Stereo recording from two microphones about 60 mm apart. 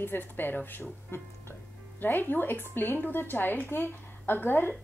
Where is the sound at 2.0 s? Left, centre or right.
Left.